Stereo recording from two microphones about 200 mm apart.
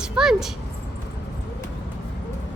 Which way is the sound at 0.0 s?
5° right (ahead or behind).